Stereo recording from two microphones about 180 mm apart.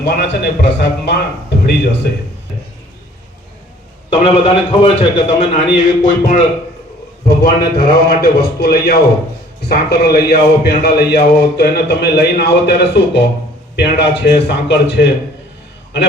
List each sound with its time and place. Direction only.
0.0 s a man's voice: 75° left (ahead or behind)
4.1 s a man's voice: 35° left (ahead or behind); by 12.7 s 70° left (ahead or behind)
13.7 s a man's voice: 70° left (ahead or behind)